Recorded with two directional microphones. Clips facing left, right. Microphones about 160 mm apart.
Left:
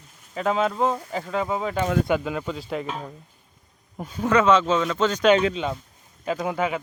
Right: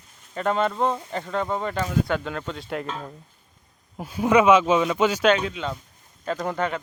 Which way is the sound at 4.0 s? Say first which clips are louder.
Right 2 dB; 10° right (ahead or behind).